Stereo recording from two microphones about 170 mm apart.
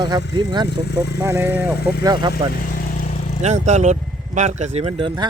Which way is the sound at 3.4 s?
40° right (ahead or behind).